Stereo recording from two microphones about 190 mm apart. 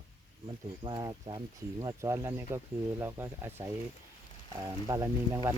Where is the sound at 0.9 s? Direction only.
25° right (ahead or behind).